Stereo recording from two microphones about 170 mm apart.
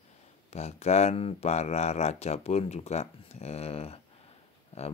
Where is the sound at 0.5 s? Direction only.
40° left (ahead or behind).